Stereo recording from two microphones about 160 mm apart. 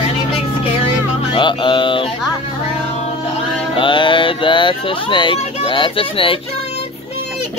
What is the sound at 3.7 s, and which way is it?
Speech, 30° left (ahead or behind).